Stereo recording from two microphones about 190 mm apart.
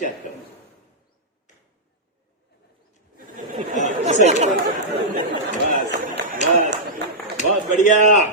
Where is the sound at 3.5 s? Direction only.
40° right (ahead or behind).